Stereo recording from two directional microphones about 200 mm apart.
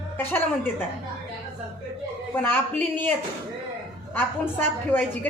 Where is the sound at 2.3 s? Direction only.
10° left (ahead or behind).